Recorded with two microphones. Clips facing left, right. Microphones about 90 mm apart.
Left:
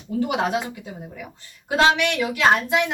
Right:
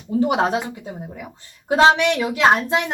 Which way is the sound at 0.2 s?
30° right (ahead or behind).